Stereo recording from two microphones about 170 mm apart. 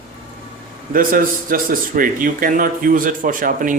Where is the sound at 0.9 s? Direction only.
55° right (ahead or behind).